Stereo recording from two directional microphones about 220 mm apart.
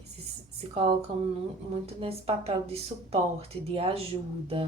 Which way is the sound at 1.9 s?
25° right (ahead or behind).